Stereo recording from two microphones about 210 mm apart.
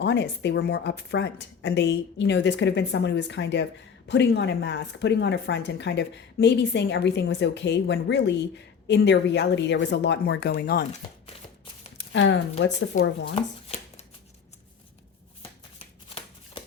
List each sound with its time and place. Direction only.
0.0 s a woman's voice: 55° left (ahead or behind)
11.9 s a woman's voice: 60° left (ahead or behind)
13.3 s chopping: 30° left (ahead or behind)